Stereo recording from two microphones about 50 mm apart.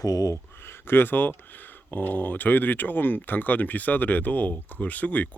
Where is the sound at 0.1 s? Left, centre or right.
Left.